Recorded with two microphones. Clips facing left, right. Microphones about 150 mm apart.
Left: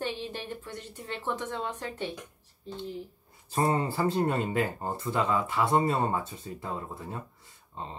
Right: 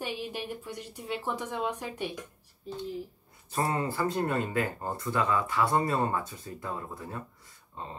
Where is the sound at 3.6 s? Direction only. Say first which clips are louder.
Left 3 dB; 25° left (ahead or behind).